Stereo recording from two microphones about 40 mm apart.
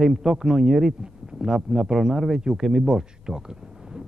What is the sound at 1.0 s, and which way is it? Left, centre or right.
Speech, right.